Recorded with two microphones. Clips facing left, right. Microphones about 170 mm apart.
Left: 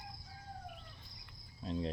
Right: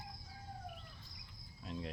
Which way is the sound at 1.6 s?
30° left (ahead or behind).